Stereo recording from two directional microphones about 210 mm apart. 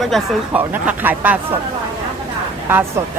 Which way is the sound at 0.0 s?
Centre (ahead or behind).